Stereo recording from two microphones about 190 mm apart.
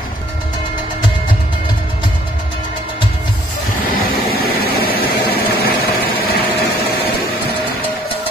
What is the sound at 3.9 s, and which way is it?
Vehicle, 50° left (ahead or behind).